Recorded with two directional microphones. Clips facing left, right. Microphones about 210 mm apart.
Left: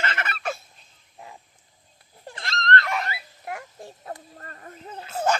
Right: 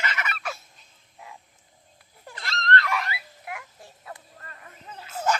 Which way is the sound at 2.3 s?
40° left (ahead or behind).